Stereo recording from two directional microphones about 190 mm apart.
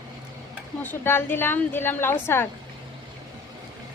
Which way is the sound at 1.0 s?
10° left (ahead or behind).